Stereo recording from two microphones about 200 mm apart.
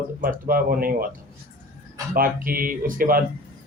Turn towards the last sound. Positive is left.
turn(degrees=-45)  # may be behind; listen again after turning